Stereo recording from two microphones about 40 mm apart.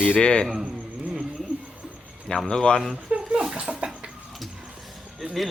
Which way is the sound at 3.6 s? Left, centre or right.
Right.